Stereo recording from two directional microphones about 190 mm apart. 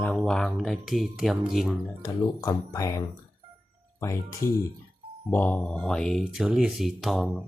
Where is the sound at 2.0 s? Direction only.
15° left (ahead or behind); by 7.4 s centre (ahead or behind).